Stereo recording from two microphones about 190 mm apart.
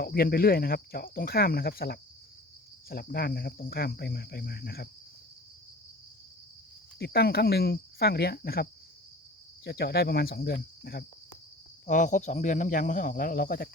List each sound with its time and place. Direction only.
0.0 s speech: 50° left (ahead or behind)
7.0 s speech: 55° left (ahead or behind)
9.6 s speech: 60° left (ahead or behind)
11.9 s speech: 40° left (ahead or behind)